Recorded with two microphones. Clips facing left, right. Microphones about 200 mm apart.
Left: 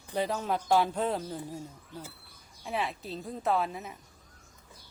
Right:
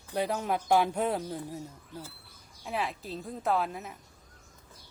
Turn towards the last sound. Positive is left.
turn(degrees=0)  # may be behind; listen again after turning